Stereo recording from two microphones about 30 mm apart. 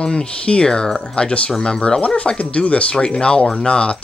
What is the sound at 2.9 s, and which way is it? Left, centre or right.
Speech, left.